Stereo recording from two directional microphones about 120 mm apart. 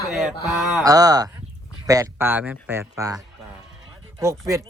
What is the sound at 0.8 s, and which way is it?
Speech, 30° right (ahead or behind).